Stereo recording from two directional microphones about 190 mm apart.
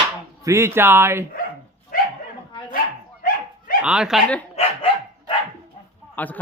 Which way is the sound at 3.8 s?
5° right (ahead or behind).